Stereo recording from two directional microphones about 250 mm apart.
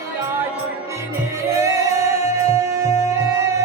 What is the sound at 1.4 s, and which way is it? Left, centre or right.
Music, centre.